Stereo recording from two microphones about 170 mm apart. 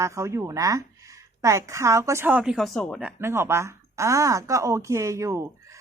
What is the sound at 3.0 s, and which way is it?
A woman's voice, 10° right (ahead or behind).